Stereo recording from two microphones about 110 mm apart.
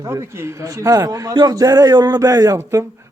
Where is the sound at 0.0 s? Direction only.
25° right (ahead or behind).